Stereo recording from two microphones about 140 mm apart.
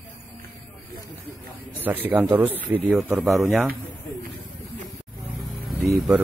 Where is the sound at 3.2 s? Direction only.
Centre (ahead or behind).